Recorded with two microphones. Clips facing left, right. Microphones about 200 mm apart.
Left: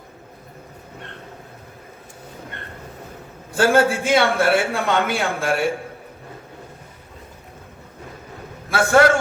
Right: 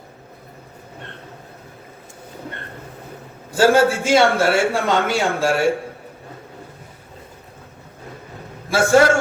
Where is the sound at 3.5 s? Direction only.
55° left (ahead or behind).